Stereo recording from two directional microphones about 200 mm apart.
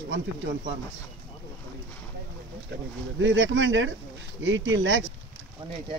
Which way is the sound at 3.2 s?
70° right (ahead or behind).